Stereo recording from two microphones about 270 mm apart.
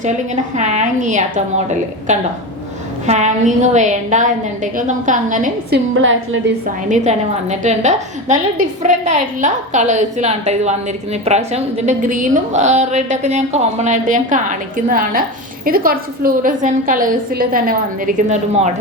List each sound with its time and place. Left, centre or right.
0.5 s a woman's voice: right
3.1 s a woman's voice: right
6.0 s a woman's voice: right
6.9 s a woman's voice: right